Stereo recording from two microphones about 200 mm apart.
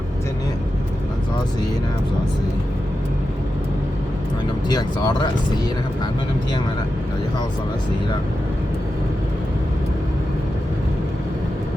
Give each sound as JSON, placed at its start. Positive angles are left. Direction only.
{"t": 4.7, "sound": "speech", "side_deg": 20}